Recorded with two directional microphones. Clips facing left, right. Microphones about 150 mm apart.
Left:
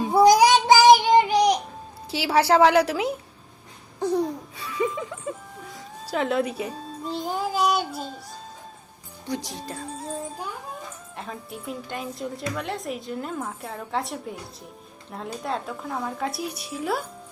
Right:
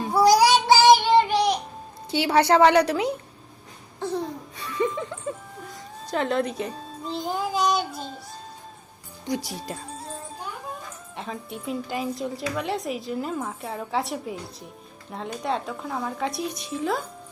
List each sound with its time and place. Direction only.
0.1 s child singing: 20° left (ahead or behind)
2.0 s a woman's voice: 5° left (ahead or behind)
4.5 s music: 5° left (ahead or behind)
9.2 s speech: 10° right (ahead or behind)
11.2 s a woman's voice: centre (ahead or behind)